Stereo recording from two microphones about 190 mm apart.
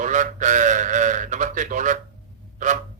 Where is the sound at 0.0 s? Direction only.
40° right (ahead or behind).